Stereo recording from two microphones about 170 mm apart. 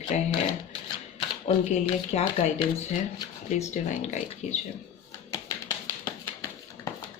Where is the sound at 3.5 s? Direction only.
45° left (ahead or behind).